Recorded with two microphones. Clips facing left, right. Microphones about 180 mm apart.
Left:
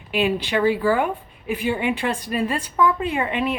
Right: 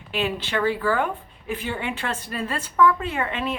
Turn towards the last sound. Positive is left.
turn(degrees=15)  # may be behind; listen again after turning